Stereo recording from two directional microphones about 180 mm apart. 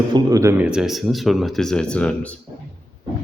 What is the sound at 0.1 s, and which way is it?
Speech, 20° right (ahead or behind).